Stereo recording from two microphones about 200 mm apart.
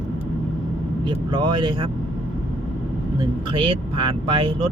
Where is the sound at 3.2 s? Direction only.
25° right (ahead or behind).